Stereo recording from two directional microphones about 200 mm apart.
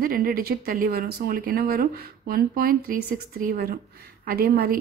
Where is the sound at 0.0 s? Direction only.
50° right (ahead or behind).